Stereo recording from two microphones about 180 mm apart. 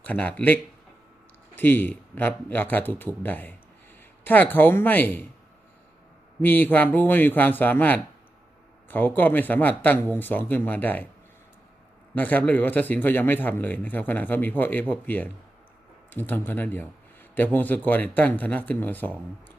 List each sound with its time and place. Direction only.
0.0 s speech: 10° left (ahead or behind)
6.4 s speech: 10° left (ahead or behind)
12.1 s speech: 10° left (ahead or behind)